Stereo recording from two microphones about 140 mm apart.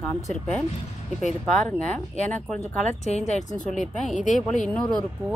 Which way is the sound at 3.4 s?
60° left (ahead or behind).